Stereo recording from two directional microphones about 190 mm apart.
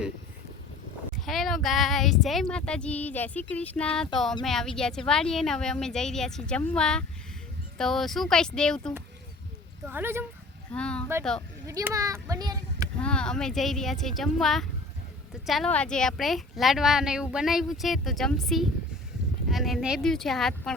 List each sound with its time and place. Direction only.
1.2 s a woman's voice: centre (ahead or behind)
9.8 s speech: 10° right (ahead or behind)
10.7 s a woman's voice: 5° left (ahead or behind)
11.6 s speech: 15° right (ahead or behind)
13.0 s a woman's voice: 5° left (ahead or behind)